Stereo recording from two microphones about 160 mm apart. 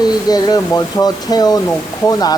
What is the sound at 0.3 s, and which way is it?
Speech, 25° left (ahead or behind).